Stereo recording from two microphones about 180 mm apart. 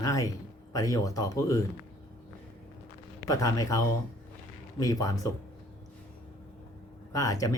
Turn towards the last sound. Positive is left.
turn(degrees=20)  # may be behind; listen again after turning